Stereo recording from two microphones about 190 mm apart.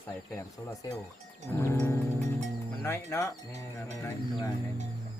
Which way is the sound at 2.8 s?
15° left (ahead or behind).